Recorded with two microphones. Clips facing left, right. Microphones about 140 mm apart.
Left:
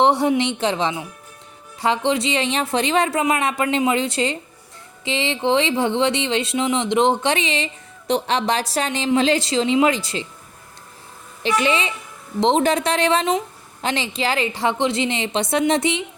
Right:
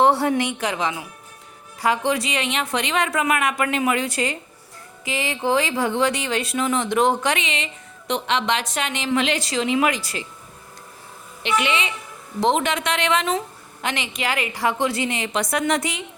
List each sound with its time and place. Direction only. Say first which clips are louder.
0.0 s speech: left 1 dB; 20° left (ahead or behind)
11.4 s a woman's voice: left 3 dB; 35° left (ahead or behind)